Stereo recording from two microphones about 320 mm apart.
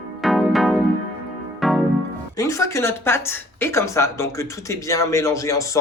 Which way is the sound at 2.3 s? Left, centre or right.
Centre.